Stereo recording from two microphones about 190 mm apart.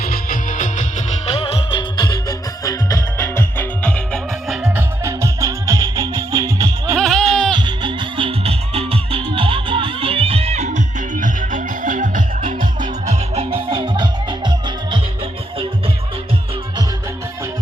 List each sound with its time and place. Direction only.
0.0 s music: 45° left (ahead or behind); by 4.5 s 5° left (ahead or behind)
4.6 s music: 10° right (ahead or behind)
7.0 s goat: 5° left (ahead or behind)
7.5 s music: 25° right (ahead or behind)